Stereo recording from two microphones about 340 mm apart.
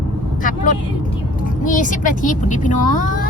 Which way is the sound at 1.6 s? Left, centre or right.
Left.